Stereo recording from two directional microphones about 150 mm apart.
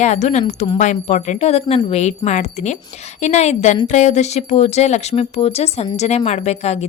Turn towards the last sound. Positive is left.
turn(degrees=45)  # may be behind; listen again after turning